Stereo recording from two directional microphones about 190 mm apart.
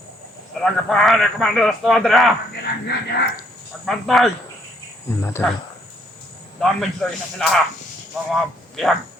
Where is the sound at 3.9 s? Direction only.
Centre (ahead or behind).